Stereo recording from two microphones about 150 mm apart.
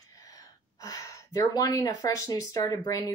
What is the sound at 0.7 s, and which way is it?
Speech, 25° left (ahead or behind).